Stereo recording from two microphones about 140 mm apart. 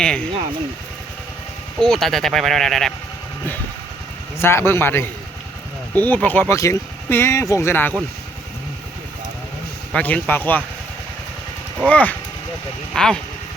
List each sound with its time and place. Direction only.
0.0 s speech: 5° left (ahead or behind)
1.8 s speech: 5° left (ahead or behind)
4.4 s speech: 20° left (ahead or behind)
9.9 s speech: 10° left (ahead or behind)
11.9 s speech: 10° left (ahead or behind)